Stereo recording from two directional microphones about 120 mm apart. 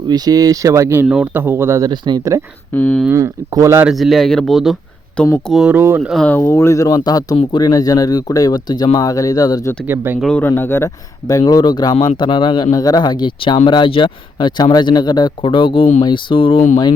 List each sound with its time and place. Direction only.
0.1 s speech: 30° right (ahead or behind)
1.0 s speech: 10° right (ahead or behind)
1.9 s speech: 35° right (ahead or behind)
2.7 s speech: 15° left (ahead or behind)
3.1 s speech: 25° right (ahead or behind)
3.8 s speech: centre (ahead or behind)
5.6 s speech: 15° right (ahead or behind)
6.2 s speech: 20° left (ahead or behind)
9.8 s speech: 15° right (ahead or behind)
10.2 s speech: 5° left (ahead or behind)
10.4 s speech: 20° left (ahead or behind); by 16.6 s 45° left (ahead or behind)